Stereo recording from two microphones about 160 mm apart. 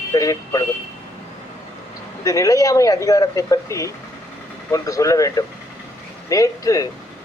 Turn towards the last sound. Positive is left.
turn(degrees=20)  # may be behind; listen again after turning